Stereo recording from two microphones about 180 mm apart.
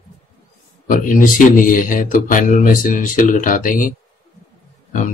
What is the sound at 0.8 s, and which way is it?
A man's voice, 50° left (ahead or behind).